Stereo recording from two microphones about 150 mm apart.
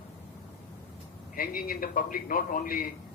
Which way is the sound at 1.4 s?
70° left (ahead or behind).